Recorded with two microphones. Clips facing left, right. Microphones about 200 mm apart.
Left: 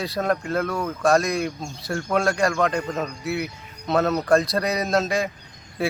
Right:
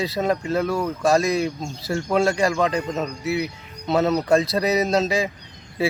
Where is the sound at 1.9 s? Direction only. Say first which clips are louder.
Right 3 dB; 15° right (ahead or behind).